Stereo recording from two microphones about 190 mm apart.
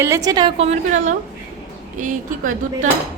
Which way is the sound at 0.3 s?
25° right (ahead or behind).